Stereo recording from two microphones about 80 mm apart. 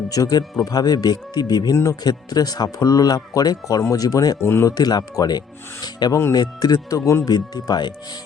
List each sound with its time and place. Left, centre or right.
0.1 s speech: left
1.7 s speech: left
4.4 s speech: left
4.7 s speech: left
7.3 s speech: left